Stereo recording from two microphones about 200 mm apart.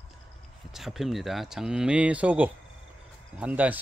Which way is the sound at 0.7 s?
Centre (ahead or behind).